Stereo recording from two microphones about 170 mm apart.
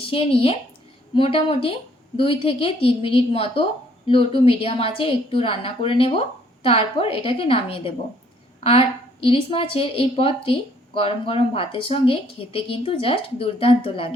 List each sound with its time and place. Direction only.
0.1 s speech: 35° left (ahead or behind)
9.2 s speech: 30° left (ahead or behind)